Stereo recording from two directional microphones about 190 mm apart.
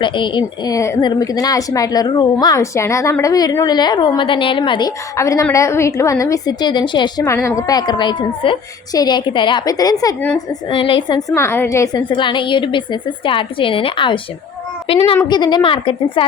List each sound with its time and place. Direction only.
0.0 s a woman's voice: 25° left (ahead or behind)
11.3 s a woman's voice: 15° left (ahead or behind)
15.3 s a woman's voice: 20° left (ahead or behind)